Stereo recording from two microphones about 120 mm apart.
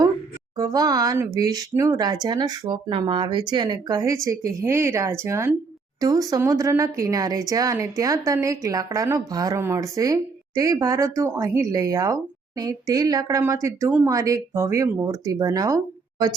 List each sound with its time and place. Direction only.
0.5 s speech: 30° right (ahead or behind)